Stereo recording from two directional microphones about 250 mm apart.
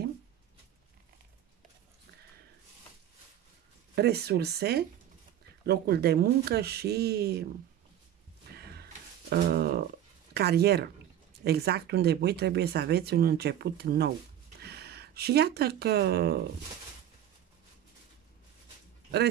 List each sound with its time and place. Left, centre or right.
3.9 s speech: right
8.5 s a sound: right
9.3 s speech: right